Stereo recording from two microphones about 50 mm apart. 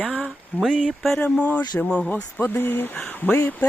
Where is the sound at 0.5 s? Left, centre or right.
Left.